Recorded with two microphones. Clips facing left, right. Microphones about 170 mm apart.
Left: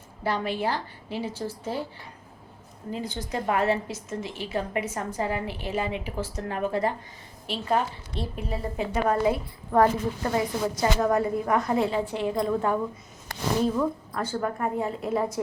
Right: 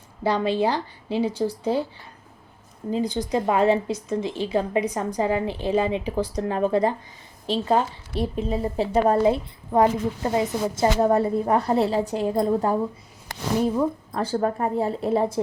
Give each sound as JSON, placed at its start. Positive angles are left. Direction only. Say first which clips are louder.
{"t": 0.2, "sound": "a woman's voice", "louder": "right 6 dB", "side_deg": -20}
{"t": 2.9, "sound": "a woman's voice", "louder": "right 8 dB", "side_deg": -15}